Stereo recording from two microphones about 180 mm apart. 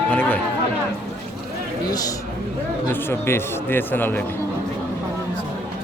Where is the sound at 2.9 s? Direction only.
15° left (ahead or behind).